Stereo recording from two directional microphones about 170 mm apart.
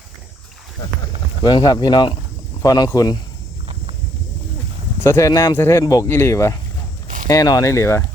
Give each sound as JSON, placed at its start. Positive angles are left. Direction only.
{"t": 1.4, "sound": "speech", "side_deg": 25}
{"t": 5.0, "sound": "speech", "side_deg": 15}